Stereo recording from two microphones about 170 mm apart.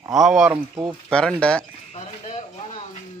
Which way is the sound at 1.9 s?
40° left (ahead or behind).